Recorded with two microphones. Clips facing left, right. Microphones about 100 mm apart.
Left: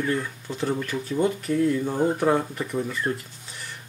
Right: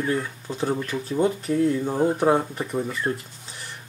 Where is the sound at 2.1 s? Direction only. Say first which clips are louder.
Right 3 dB; 25° right (ahead or behind).